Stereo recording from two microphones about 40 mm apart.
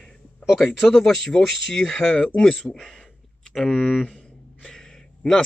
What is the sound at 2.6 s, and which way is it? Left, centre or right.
Speech, centre.